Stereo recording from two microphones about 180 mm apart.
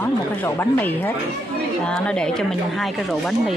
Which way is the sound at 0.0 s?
10° left (ahead or behind).